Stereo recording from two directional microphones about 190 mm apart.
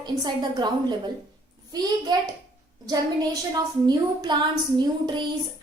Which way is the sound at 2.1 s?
20° right (ahead or behind).